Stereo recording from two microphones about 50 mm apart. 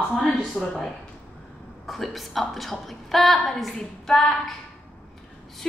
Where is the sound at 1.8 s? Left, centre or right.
Centre.